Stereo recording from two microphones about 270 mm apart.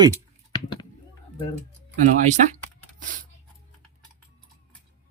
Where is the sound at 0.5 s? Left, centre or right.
Centre.